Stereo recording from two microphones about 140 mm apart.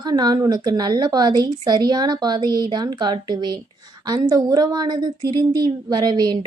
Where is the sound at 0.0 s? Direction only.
30° right (ahead or behind).